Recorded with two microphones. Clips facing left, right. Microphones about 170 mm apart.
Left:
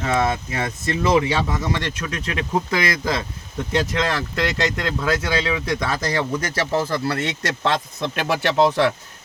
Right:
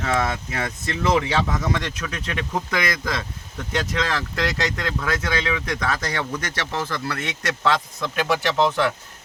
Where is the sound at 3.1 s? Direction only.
25° left (ahead or behind).